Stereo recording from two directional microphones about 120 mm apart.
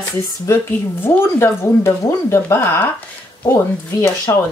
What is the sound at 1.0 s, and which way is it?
Speech, 20° left (ahead or behind).